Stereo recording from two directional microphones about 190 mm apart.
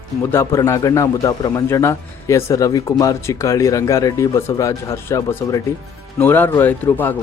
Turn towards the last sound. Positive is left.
turn(degrees=10)  # may be behind; listen again after turning